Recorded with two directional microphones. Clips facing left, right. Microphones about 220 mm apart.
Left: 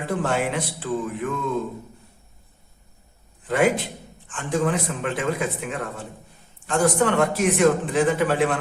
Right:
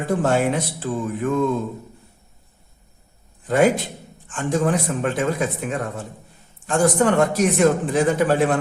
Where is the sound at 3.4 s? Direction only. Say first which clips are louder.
Right 3 dB; 40° right (ahead or behind).